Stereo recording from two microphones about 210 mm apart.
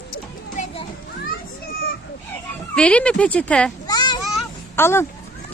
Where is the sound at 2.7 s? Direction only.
5° left (ahead or behind).